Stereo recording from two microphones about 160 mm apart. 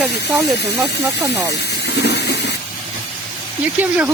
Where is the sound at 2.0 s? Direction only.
90° left.